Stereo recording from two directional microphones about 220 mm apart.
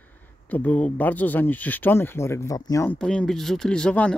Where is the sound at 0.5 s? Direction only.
5° left (ahead or behind).